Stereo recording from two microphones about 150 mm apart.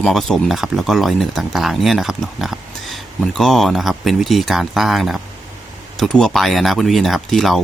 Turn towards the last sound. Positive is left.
turn(degrees=0)  # may be behind; listen again after turning